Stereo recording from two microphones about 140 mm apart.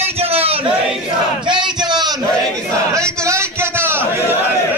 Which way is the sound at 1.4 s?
35° right (ahead or behind).